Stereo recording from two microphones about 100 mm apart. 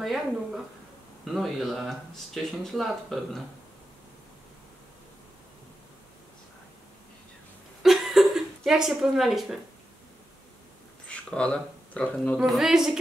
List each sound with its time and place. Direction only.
0.0 s speech: centre (ahead or behind)
7.8 s a sound: 5° right (ahead or behind)
11.1 s speech: 10° left (ahead or behind)
12.4 s speech: 5° right (ahead or behind)